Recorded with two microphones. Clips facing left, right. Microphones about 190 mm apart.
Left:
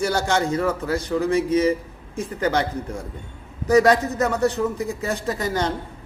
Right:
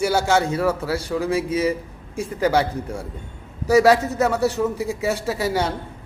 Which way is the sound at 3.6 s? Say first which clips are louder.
Right 1 dB; 10° right (ahead or behind).